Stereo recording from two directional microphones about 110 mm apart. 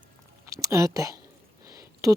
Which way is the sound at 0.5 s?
30° right (ahead or behind).